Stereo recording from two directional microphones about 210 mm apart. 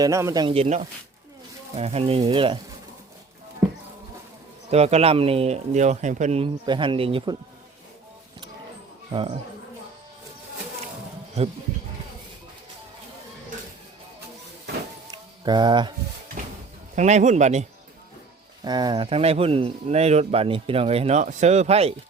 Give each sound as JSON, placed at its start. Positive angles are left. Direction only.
{"t": 0.0, "sound": "speech", "side_deg": -15}
{"t": 4.7, "sound": "speech", "side_deg": -30}
{"t": 15.1, "sound": "a sound", "side_deg": -20}
{"t": 16.4, "sound": "a sound", "side_deg": -40}
{"t": 16.9, "sound": "speech", "side_deg": -35}
{"t": 18.6, "sound": "speech", "side_deg": -20}